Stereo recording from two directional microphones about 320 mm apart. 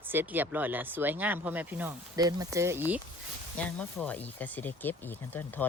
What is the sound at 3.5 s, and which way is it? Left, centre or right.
A woman's voice, centre.